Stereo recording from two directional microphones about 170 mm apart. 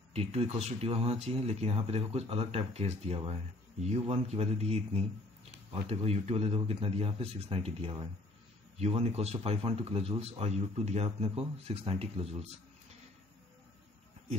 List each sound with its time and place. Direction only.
0.1 s speech: 35° right (ahead or behind)